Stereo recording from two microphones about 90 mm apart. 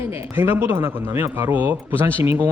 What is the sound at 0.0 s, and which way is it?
A woman's voice, 25° right (ahead or behind).